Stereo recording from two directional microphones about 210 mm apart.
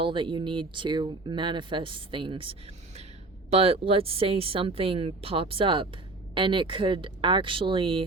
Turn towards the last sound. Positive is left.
turn(degrees=-25)  # may be behind; listen again after turning